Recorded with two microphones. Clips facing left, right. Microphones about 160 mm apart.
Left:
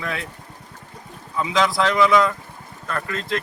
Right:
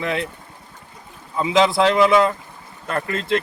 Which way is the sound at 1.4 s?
25° right (ahead or behind).